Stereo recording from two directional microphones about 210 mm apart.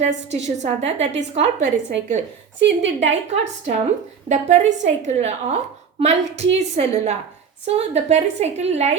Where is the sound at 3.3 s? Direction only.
30° right (ahead or behind).